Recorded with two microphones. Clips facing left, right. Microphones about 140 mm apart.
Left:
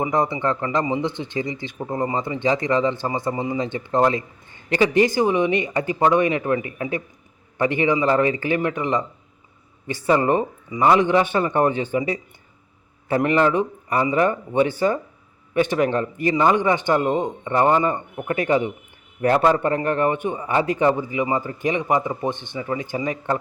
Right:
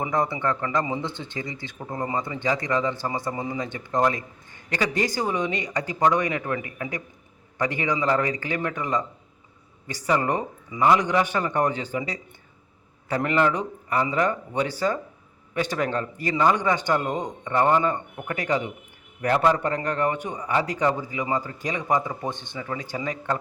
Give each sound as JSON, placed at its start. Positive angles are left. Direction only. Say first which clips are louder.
{"t": 0.0, "sound": "speech", "louder": "left 4 dB", "side_deg": 20}